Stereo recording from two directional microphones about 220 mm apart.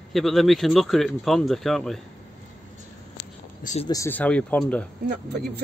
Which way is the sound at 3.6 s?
30° left (ahead or behind).